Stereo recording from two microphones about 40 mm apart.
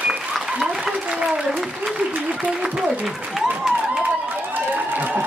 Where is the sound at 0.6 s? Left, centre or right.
Centre.